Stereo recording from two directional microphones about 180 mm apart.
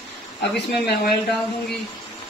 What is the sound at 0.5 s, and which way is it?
Speech, 65° left (ahead or behind).